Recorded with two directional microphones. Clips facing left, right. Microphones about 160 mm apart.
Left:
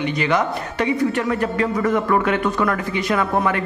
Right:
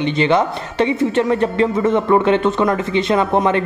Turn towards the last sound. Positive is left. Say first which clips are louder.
# right 4 dB
turn(degrees=-25)  # may be behind; listen again after turning